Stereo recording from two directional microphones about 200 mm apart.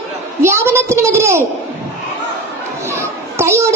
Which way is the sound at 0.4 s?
10° right (ahead or behind).